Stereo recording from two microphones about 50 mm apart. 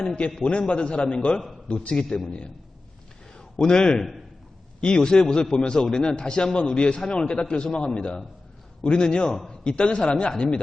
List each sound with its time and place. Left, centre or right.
0.7 s a man's voice: left
3.3 s a man's voice: centre